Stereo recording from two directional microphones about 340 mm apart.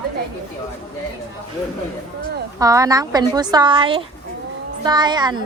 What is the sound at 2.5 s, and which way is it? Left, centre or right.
A woman's voice, centre.